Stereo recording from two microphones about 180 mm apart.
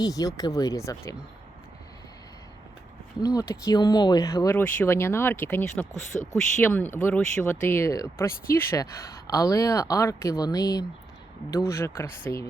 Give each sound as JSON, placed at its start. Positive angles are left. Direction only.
{"t": 0.0, "sound": "speech", "side_deg": 20}
{"t": 3.2, "sound": "speech", "side_deg": 15}
{"t": 4.5, "sound": "speech", "side_deg": 10}